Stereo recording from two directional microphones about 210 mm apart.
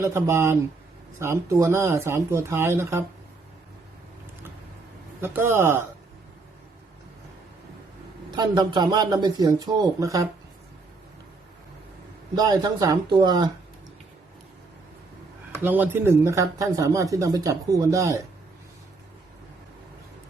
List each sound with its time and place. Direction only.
0.0 s speech: 10° right (ahead or behind)
5.2 s speech: 10° right (ahead or behind)
8.3 s speech: 20° right (ahead or behind)
12.4 s speech: 20° right (ahead or behind)
15.6 s speech: 10° right (ahead or behind)